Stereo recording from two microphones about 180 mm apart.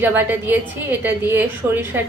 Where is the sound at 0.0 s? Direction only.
10° right (ahead or behind).